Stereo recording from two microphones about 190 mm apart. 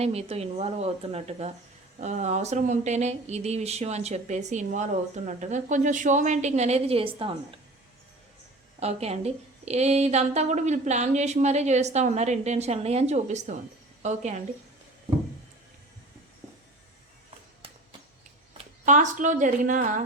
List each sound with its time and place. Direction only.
0.0 s speech: 35° right (ahead or behind)
8.8 s speech: 35° right (ahead or behind)
18.5 s speech: 40° right (ahead or behind)